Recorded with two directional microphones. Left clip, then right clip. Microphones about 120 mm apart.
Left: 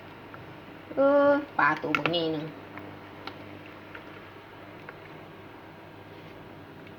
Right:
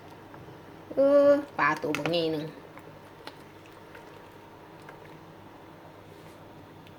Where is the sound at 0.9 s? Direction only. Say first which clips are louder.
Right 1 dB; 40° right (ahead or behind).